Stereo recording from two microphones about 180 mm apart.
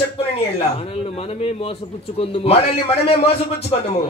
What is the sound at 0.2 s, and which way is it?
Speech, 35° left (ahead or behind).